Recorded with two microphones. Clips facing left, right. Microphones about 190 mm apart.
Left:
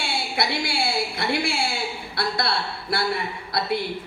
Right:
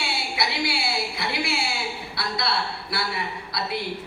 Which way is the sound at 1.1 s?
55° left (ahead or behind).